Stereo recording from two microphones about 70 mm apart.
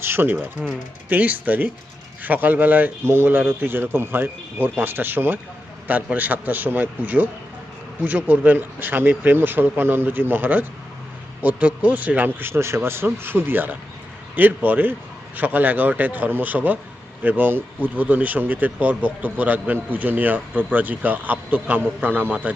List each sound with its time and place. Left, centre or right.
0.0 s a sound: right
0.6 s speech: centre
1.1 s speech: right